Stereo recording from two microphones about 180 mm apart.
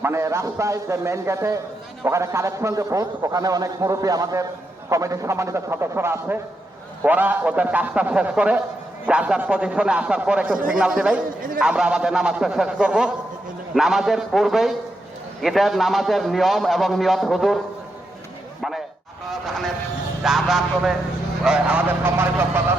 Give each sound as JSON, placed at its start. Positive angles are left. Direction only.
{"t": 0.0, "sound": "a man's voice", "side_deg": -15}
{"t": 19.3, "sound": "a sound", "side_deg": 0}
{"t": 20.2, "sound": "a man's voice", "side_deg": 0}